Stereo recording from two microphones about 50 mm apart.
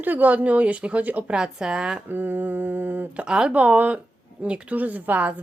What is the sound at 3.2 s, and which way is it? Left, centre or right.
Speech, centre.